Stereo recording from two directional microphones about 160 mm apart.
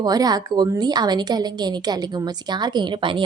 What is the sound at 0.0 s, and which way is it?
A woman's voice, 25° right (ahead or behind).